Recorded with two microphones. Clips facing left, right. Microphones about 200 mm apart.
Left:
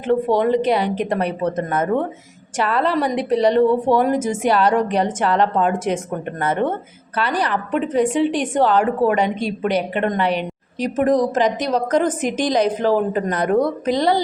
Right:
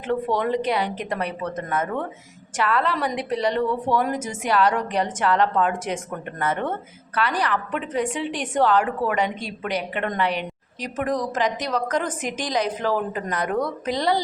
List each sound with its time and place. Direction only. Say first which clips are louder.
0.1 s a woman's voice: left 6 dB; 25° left (ahead or behind)